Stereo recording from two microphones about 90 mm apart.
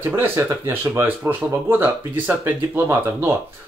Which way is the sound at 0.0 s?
25° right (ahead or behind).